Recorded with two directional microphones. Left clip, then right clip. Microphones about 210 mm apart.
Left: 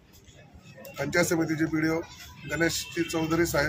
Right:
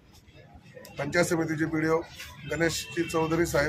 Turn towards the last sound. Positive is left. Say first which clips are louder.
# even
turn(degrees=-5)  # may be behind; listen again after turning